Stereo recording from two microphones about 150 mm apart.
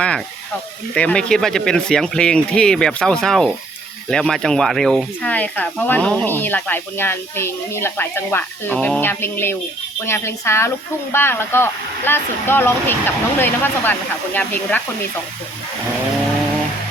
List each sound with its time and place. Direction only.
0.9 s speech: 5° left (ahead or behind)